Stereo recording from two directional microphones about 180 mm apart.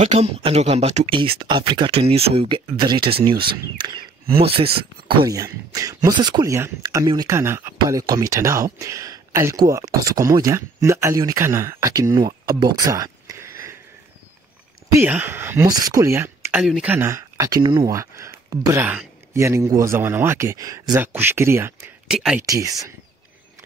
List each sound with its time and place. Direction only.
0.0 s speech: 35° right (ahead or behind); by 12.3 s 20° right (ahead or behind)
12.4 s a sound: 20° right (ahead or behind)
15.0 s speech: 10° right (ahead or behind)
22.0 s speech: 5° right (ahead or behind)
22.5 s speech: 20° right (ahead or behind)